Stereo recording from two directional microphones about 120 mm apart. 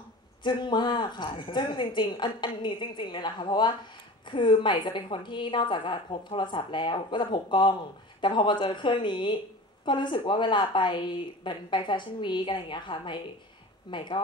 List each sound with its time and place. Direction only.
0.4 s a woman's voice: 40° left (ahead or behind)